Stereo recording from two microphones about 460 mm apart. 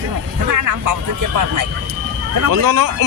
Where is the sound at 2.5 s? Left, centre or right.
Right.